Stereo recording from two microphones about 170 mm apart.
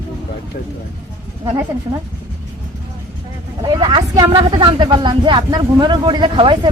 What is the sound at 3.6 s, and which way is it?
Speech, 30° right (ahead or behind).